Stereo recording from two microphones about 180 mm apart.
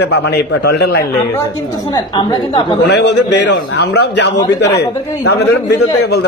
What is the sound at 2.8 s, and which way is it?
A man's voice, 70° left (ahead or behind).